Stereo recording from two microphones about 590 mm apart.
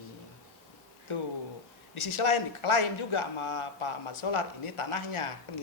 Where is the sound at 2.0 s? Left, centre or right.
Left.